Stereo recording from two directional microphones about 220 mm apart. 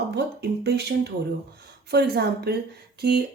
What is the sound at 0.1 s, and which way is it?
A woman's voice, 50° right (ahead or behind).